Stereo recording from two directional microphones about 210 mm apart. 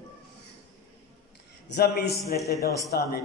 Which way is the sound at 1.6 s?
50° left (ahead or behind).